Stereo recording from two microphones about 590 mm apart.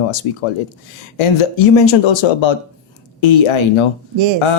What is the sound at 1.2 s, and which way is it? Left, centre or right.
Speech, left.